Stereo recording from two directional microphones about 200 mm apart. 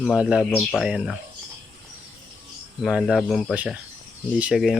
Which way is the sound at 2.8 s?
Centre (ahead or behind).